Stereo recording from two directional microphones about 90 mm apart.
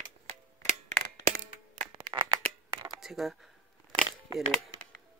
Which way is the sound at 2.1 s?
35° right (ahead or behind).